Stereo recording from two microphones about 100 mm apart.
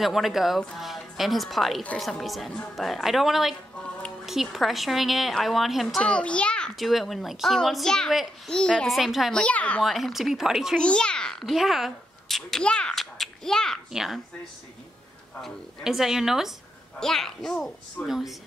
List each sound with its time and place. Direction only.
0.0 s a child's voice: centre (ahead or behind)
6.0 s a child's voice: 10° left (ahead or behind)
8.5 s a child's voice: 5° left (ahead or behind)
9.4 s speech: 15° left (ahead or behind)
9.8 s a child's voice: centre (ahead or behind)
10.8 s a sound: 10° left (ahead or behind)
15.4 s a child's voice: 5° right (ahead or behind)